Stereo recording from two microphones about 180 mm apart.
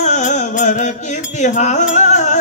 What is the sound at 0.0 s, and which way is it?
Music, 40° left (ahead or behind).